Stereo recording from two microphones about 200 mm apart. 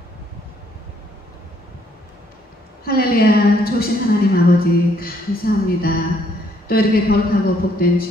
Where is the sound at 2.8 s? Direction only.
50° left (ahead or behind).